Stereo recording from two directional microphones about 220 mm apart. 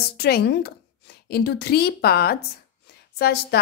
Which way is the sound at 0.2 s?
45° left (ahead or behind).